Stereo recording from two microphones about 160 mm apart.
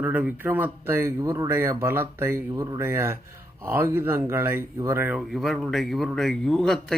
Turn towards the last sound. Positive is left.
turn(degrees=5)  # may be behind; listen again after turning